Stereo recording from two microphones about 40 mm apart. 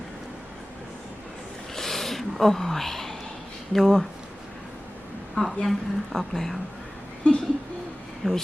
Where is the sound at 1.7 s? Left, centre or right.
Centre.